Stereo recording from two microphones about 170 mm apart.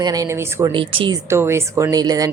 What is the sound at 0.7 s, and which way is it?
Speech, 30° right (ahead or behind).